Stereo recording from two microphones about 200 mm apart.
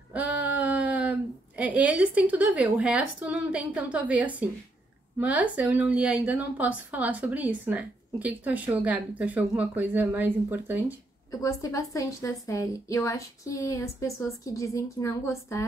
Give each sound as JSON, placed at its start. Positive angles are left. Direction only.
{"t": 0.1, "sound": "a sound", "side_deg": -5}
{"t": 1.6, "sound": "a woman's voice", "side_deg": -5}
{"t": 11.4, "sound": "a woman's voice", "side_deg": 15}